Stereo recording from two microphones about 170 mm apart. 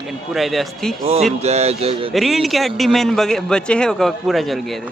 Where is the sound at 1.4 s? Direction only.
40° right (ahead or behind).